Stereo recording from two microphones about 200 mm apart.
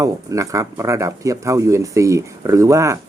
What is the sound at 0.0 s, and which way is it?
Speech, 15° right (ahead or behind).